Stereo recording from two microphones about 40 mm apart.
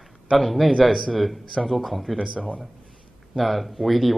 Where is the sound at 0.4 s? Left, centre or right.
Centre.